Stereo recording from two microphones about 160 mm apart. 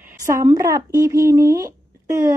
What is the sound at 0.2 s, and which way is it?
A woman's voice, 20° right (ahead or behind).